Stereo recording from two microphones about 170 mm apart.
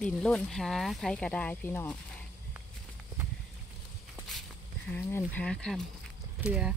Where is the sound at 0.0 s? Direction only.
5° left (ahead or behind).